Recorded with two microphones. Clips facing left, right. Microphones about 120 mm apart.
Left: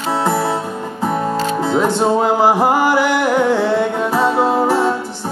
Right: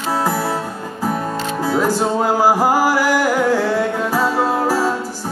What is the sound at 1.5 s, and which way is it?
Music, 25° left (ahead or behind).